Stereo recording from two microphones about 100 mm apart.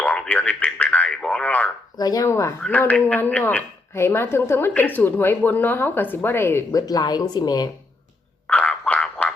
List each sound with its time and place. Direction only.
0.0 s speech: 15° left (ahead or behind)
2.0 s speech: 40° left (ahead or behind)
2.2 s a woman's voice: 25° left (ahead or behind)
2.6 s a man's voice: 15° left (ahead or behind)
6.7 s speech: 40° left (ahead or behind)
8.4 s a sound: 15° left (ahead or behind)